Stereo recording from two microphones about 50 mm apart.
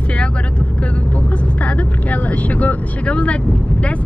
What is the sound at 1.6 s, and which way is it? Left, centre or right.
Speech, left.